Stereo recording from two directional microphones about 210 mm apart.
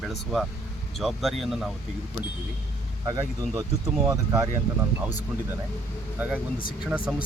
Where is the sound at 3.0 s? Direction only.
15° right (ahead or behind).